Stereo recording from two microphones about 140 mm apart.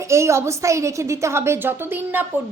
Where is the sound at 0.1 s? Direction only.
20° right (ahead or behind).